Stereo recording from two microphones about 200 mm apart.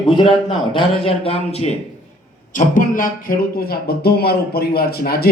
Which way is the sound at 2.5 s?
40° left (ahead or behind).